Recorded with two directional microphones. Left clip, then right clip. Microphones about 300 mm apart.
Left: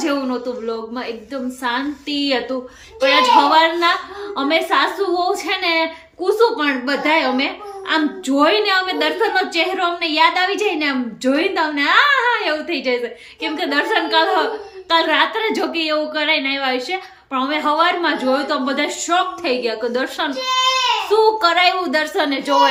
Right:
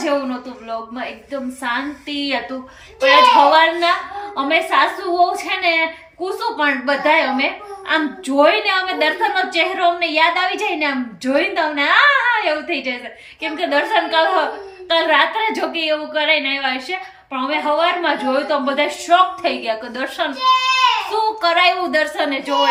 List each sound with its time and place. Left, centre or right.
0.0 s a woman's voice: centre
21.4 s a woman's voice: centre